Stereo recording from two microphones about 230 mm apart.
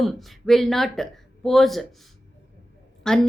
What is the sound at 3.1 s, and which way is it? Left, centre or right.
Speech, centre.